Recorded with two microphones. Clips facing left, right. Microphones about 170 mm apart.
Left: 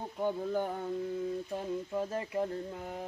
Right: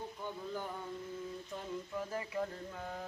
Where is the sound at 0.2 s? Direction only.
55° left (ahead or behind).